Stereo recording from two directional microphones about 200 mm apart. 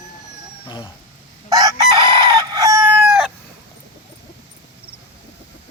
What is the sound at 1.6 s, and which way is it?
Chicken, 20° right (ahead or behind).